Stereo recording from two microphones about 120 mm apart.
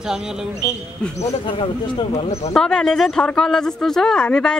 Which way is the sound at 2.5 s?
5° left (ahead or behind).